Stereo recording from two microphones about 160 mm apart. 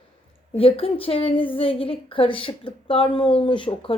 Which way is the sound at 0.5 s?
35° left (ahead or behind).